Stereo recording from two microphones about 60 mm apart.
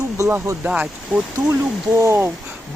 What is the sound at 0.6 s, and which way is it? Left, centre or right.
Speech, right.